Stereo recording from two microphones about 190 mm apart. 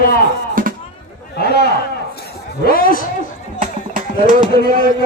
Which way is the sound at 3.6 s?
45° right (ahead or behind).